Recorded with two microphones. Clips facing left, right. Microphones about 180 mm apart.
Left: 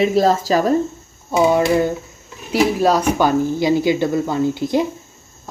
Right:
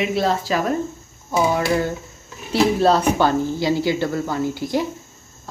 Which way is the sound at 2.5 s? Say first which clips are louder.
Left 1 dB; 10° left (ahead or behind).